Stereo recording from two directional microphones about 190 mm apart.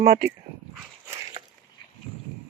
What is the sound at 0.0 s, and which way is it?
Speech, 50° right (ahead or behind).